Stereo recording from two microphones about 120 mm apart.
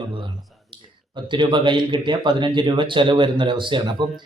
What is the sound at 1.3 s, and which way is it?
Speech, 40° right (ahead or behind).